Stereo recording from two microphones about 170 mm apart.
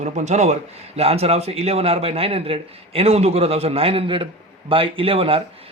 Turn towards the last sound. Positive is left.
turn(degrees=-35)  # may be behind; listen again after turning